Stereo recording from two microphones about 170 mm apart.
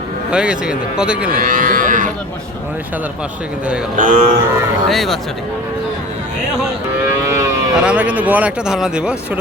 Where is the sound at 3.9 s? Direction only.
55° right (ahead or behind).